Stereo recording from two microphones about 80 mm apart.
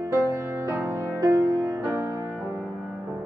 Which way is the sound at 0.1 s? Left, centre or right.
Right.